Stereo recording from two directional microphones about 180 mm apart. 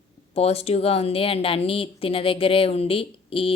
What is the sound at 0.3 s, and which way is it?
A woman's voice, 35° left (ahead or behind).